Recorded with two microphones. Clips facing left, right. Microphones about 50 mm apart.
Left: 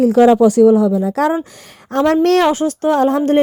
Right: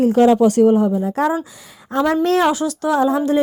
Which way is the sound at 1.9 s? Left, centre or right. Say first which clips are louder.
Left 4 dB; left.